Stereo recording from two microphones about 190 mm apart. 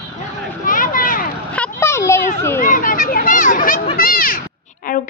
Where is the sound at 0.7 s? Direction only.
45° left (ahead or behind).